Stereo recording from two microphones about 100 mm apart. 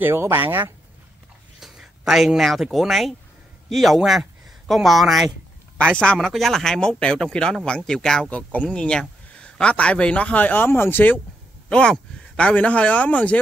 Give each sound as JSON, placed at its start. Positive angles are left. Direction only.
{"t": 0.0, "sound": "speech", "side_deg": -25}
{"t": 1.6, "sound": "speech", "side_deg": -5}
{"t": 11.7, "sound": "speech", "side_deg": 10}